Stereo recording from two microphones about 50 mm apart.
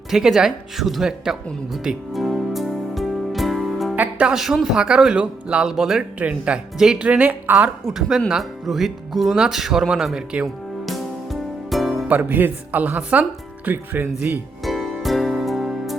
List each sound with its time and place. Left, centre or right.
0.1 s speech: centre
2.1 s music: centre
4.4 s speech: centre
5.7 s speech: centre
6.0 s speech: right
6.7 s speech: centre
7.0 s speech: right
7.5 s speech: right
7.9 s speech: centre
10.8 s music: centre
12.0 s speech: right
14.6 s music: centre